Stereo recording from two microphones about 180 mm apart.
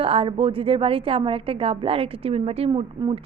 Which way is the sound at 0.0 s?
30° right (ahead or behind).